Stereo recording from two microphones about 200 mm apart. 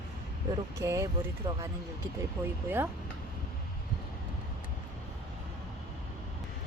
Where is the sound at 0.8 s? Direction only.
15° right (ahead or behind).